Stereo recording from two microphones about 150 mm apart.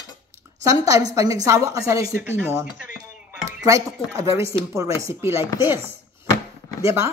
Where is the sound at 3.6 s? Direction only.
25° right (ahead or behind).